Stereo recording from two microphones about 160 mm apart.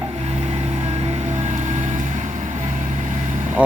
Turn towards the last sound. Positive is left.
turn(degrees=-50)  # may be behind; listen again after turning